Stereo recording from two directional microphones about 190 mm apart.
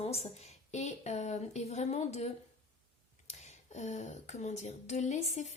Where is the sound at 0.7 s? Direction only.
35° left (ahead or behind).